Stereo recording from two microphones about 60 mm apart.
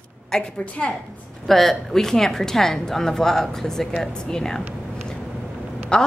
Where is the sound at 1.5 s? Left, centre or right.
Centre.